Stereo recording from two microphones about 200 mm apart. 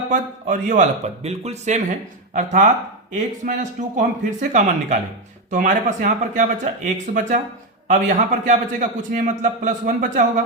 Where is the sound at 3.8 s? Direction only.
40° right (ahead or behind).